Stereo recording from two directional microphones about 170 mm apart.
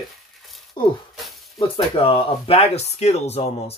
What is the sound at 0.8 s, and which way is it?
Speech, 30° left (ahead or behind).